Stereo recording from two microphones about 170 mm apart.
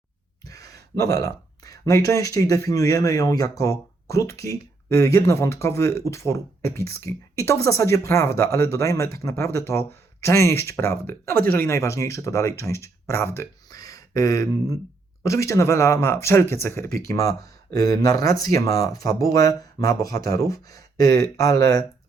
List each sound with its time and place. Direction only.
0.4 s speech: 20° left (ahead or behind)